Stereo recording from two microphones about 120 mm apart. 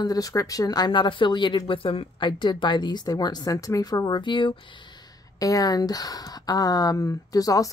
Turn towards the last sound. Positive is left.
turn(degrees=30)  # may be behind; listen again after turning